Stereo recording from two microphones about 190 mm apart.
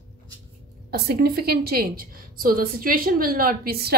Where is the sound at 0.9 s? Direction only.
55° right (ahead or behind).